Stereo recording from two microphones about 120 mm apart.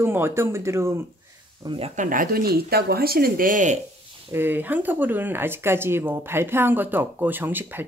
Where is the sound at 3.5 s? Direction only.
90° right.